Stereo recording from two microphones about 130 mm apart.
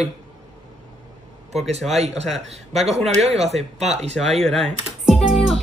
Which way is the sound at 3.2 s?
55° right (ahead or behind).